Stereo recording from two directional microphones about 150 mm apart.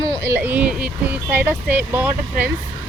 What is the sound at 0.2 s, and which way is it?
Speech, 15° right (ahead or behind).